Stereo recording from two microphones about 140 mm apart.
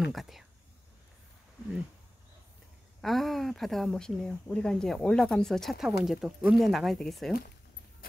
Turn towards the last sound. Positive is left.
turn(degrees=0)  # may be behind; listen again after turning